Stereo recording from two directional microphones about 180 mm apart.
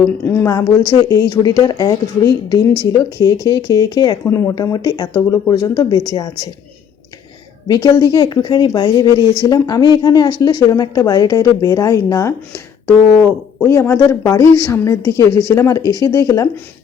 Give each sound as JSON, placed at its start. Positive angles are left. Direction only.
{"t": 0.0, "sound": "a woman's voice", "side_deg": 15}
{"t": 7.7, "sound": "a woman's voice", "side_deg": 20}